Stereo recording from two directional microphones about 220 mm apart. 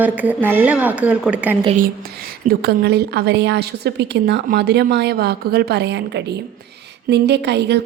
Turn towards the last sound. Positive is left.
turn(degrees=-50)  # may be behind; listen again after turning